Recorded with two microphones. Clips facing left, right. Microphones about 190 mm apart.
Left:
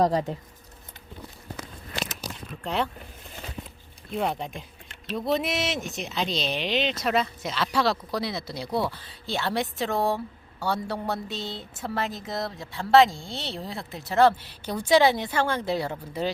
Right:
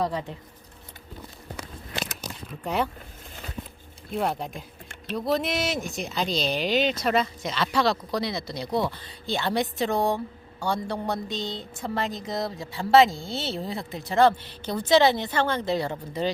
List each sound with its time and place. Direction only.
0.0 s speech: 40° left (ahead or behind)
4.1 s a woman's voice: centre (ahead or behind)